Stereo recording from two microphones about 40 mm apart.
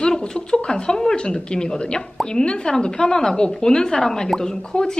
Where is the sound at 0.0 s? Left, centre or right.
Centre.